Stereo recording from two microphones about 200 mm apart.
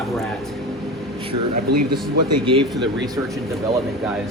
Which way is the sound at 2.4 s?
25° right (ahead or behind).